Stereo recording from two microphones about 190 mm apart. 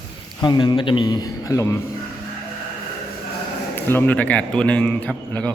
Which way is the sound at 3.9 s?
10° left (ahead or behind).